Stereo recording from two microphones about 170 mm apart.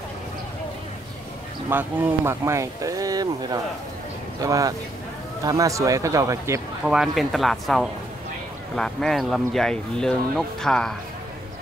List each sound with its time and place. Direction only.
1.7 s speech: 10° right (ahead or behind)
6.8 s speech: 5° right (ahead or behind)